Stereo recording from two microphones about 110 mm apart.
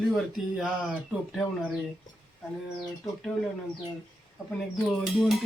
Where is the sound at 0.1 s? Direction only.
5° right (ahead or behind).